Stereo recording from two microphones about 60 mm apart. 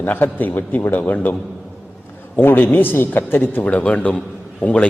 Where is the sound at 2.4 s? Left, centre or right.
Left.